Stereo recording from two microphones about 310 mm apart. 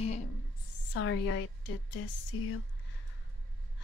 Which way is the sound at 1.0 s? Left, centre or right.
Left.